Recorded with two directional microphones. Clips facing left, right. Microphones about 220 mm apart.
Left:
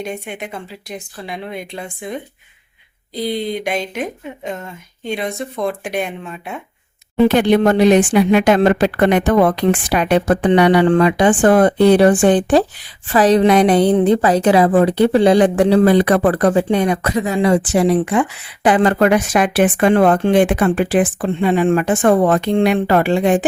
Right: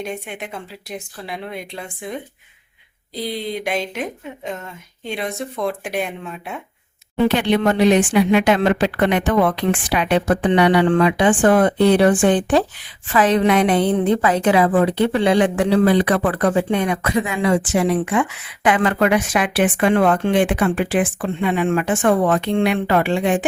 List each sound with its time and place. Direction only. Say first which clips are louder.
0.0 s speech: left 2 dB; centre (ahead or behind)
3.2 s speech: left 4 dB; centre (ahead or behind)
7.3 s a woman's voice: left 4 dB; 45° left (ahead or behind)